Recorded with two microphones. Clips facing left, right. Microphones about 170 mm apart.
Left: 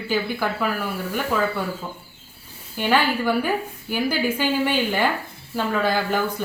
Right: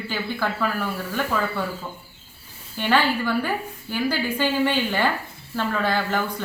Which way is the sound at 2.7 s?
10° left (ahead or behind).